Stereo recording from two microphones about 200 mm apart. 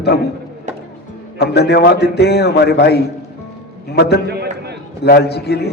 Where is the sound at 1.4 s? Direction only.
55° left (ahead or behind).